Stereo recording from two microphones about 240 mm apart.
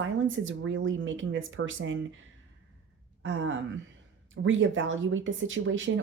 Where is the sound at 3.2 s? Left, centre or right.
Right.